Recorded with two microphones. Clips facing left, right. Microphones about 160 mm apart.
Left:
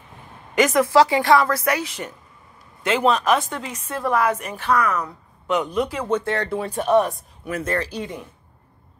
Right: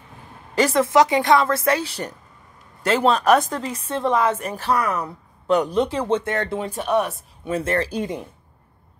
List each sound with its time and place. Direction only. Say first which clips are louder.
0.6 s a woman's voice: left 1 dB; 30° right (ahead or behind)
4.4 s speech: left 1 dB; 35° right (ahead or behind)
6.7 s speech: left 5 dB; centre (ahead or behind)
7.4 s speech: right 2 dB; 25° right (ahead or behind)